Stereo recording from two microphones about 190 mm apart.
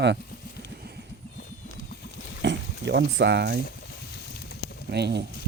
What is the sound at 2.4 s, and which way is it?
Boiling, 70° right (ahead or behind).